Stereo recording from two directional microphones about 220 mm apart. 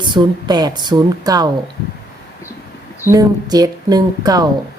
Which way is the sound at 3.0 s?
15° right (ahead or behind).